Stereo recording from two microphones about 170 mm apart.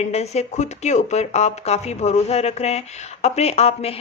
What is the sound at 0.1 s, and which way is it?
Speech, 40° left (ahead or behind).